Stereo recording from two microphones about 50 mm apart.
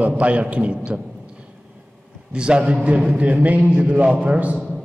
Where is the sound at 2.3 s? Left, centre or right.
Right.